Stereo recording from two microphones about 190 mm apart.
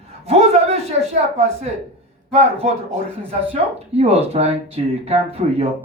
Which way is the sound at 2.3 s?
35° right (ahead or behind).